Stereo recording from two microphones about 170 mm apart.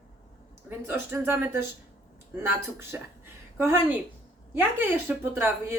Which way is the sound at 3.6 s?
15° right (ahead or behind).